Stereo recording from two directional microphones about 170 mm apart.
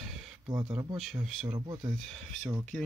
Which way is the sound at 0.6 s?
25° right (ahead or behind).